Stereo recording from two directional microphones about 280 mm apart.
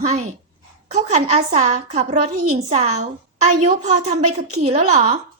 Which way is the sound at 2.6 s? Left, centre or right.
Right.